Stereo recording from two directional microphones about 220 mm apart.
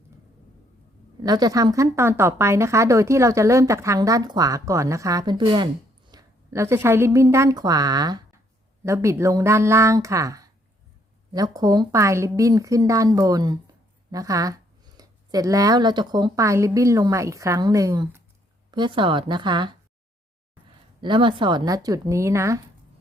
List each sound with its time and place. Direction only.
1.2 s a woman's voice: 15° right (ahead or behind)
21.0 s a woman's voice: 20° right (ahead or behind)